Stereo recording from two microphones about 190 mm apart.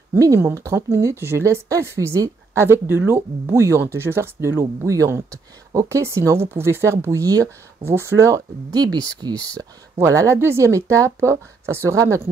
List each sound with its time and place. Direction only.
0.1 s speech: 15° right (ahead or behind)